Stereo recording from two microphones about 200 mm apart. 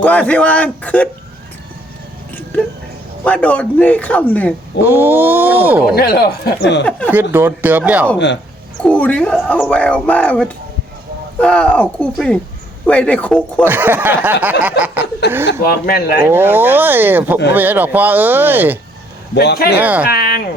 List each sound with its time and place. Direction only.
0.0 s a man's voice: 5° left (ahead or behind)
3.2 s a man's voice: 5° left (ahead or behind)
4.8 s speech: 10° right (ahead or behind)
6.0 s speech: 50° left (ahead or behind)
7.1 s speech: 10° right (ahead or behind)
8.8 s a man's voice: 5° left (ahead or behind)
13.7 s speech: 10° right (ahead or behind)
15.2 s speech: 55° left (ahead or behind)
16.2 s speech: 10° right (ahead or behind)
19.3 s speech: 55° left (ahead or behind)
19.8 s speech: 10° right (ahead or behind)
20.1 s speech: 50° left (ahead or behind)